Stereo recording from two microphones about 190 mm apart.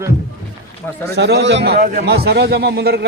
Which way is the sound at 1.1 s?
65° right (ahead or behind).